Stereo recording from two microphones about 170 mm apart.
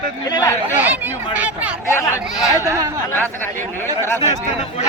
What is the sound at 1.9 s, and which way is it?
Speech, 20° left (ahead or behind).